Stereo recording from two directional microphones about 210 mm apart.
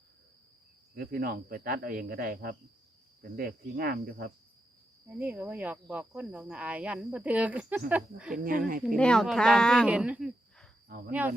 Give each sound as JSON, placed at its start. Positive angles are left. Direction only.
{"t": 0.9, "sound": "speech", "side_deg": -45}
{"t": 5.0, "sound": "speech", "side_deg": -10}
{"t": 8.4, "sound": "speech", "side_deg": -40}
{"t": 9.0, "sound": "speech", "side_deg": 5}
{"t": 10.8, "sound": "speech", "side_deg": -45}